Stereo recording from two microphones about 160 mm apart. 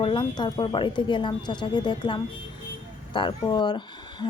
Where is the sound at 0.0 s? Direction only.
30° left (ahead or behind).